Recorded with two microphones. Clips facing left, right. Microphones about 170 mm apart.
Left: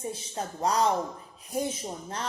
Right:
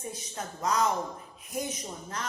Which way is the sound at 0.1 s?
30° left (ahead or behind).